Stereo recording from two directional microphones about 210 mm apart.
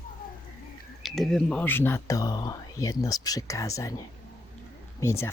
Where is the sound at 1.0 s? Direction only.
Centre (ahead or behind).